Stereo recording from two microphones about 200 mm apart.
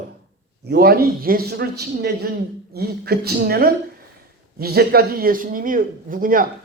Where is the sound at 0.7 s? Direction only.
50° right (ahead or behind).